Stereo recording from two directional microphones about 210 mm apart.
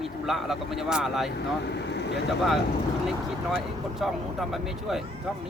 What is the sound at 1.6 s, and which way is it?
Speech, 55° left (ahead or behind).